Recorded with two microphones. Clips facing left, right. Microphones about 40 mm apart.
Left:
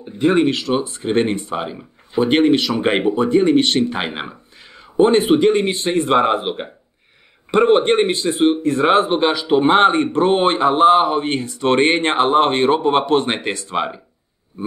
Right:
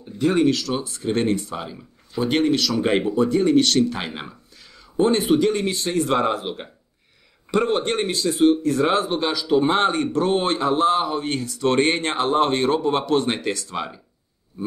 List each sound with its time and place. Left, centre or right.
0.0 s speech: left